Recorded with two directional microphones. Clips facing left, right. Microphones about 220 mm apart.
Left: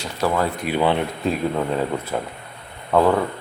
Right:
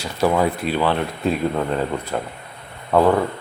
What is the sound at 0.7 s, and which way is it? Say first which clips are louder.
Speech: left 1 dB; 15° left (ahead or behind).